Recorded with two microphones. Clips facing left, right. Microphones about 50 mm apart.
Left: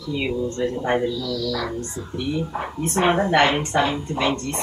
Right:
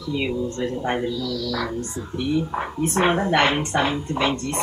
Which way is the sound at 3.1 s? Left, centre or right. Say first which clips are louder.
Left 1 dB; centre.